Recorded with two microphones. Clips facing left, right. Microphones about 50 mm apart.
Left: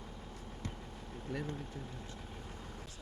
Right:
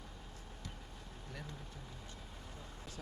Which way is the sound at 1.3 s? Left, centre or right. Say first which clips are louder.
Left 10 dB; left.